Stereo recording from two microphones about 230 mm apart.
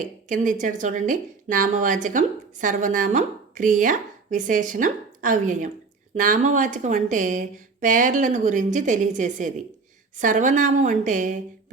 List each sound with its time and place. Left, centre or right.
0.0 s a woman's voice: right